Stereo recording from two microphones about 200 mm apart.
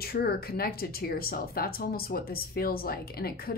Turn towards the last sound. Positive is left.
turn(degrees=50)  # may be behind; listen again after turning